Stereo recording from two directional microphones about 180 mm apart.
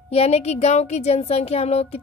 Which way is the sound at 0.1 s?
35° left (ahead or behind).